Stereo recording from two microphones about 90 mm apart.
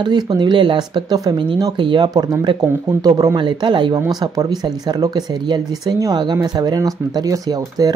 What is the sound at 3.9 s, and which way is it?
Speech, 45° right (ahead or behind).